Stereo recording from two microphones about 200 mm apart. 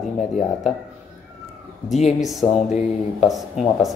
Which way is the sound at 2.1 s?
Centre (ahead or behind).